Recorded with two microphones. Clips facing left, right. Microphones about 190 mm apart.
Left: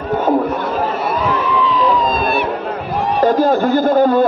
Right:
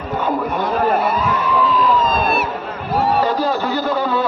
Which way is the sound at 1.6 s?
Centre (ahead or behind).